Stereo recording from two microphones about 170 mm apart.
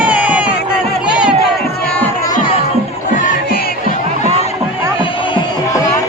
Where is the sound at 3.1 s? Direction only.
50° left (ahead or behind).